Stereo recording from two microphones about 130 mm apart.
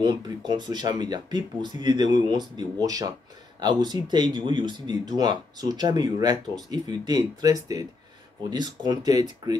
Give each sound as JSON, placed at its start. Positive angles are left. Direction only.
{"t": 0.0, "sound": "speech", "side_deg": -35}